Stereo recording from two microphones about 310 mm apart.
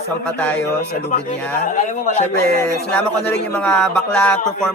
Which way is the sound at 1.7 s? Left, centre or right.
Left.